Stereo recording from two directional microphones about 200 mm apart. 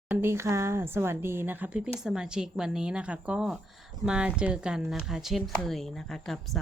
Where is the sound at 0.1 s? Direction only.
10° right (ahead or behind).